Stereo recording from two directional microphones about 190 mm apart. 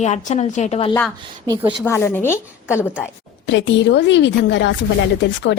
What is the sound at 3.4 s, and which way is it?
A woman's voice, 70° left (ahead or behind).